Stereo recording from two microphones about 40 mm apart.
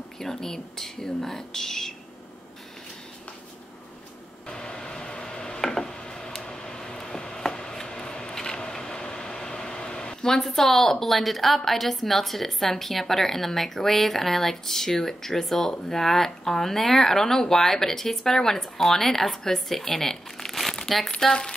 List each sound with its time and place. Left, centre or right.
0.2 s speech: centre
4.5 s a sound: centre
10.4 s a woman's voice: centre